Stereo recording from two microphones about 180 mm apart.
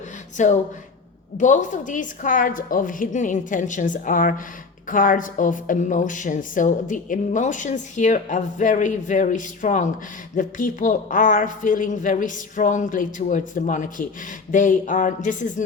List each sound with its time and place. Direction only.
0.4 s a woman's voice: 45° left (ahead or behind)